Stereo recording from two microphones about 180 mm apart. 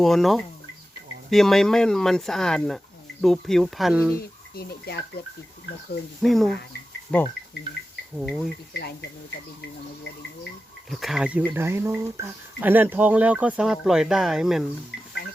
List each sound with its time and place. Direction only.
0.0 s speech: centre (ahead or behind)
4.5 s speech: 60° left (ahead or behind)
6.2 s speech: centre (ahead or behind)
8.7 s speech: 65° left (ahead or behind)
10.8 s speech: centre (ahead or behind)